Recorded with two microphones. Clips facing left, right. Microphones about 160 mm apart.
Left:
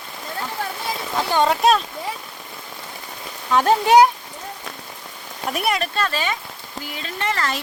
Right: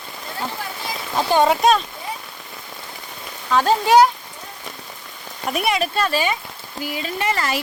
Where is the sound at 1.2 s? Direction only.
15° right (ahead or behind).